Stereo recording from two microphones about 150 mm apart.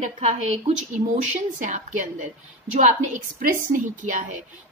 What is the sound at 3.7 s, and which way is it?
Speech, 60° right (ahead or behind).